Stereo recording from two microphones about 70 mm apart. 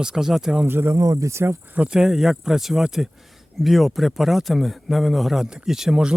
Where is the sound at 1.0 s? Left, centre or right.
Right.